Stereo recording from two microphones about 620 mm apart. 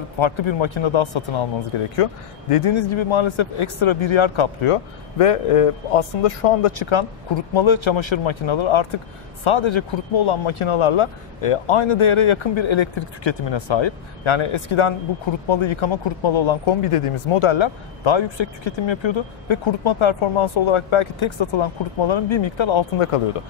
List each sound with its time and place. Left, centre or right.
0.2 s speech: left